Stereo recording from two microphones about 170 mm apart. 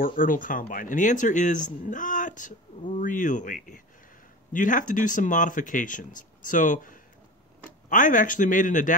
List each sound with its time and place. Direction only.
0.0 s speech: 55° left (ahead or behind)